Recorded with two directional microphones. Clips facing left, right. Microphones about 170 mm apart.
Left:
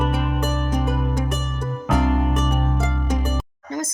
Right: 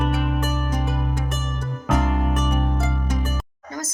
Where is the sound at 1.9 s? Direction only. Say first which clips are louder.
Left 2 dB; centre (ahead or behind).